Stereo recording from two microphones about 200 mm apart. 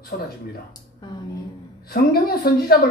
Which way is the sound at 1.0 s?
20° left (ahead or behind).